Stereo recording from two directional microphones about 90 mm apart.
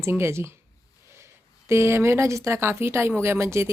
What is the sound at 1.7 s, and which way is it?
Speech, 30° right (ahead or behind).